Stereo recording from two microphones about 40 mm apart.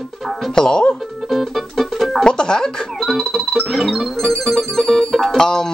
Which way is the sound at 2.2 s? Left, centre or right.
Centre.